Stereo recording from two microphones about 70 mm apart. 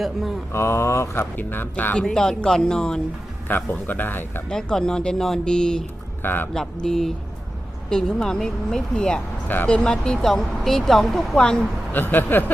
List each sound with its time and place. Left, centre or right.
0.0 s speech: centre
0.5 s speech: left
1.4 s speech: left
2.0 s speech: centre
3.5 s speech: left
4.4 s speech: centre
6.2 s speech: left
6.8 s speech: centre
11.9 s speech: left